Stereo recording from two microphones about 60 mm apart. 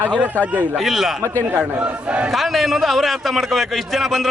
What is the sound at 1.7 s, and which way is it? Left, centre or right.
Speech, right.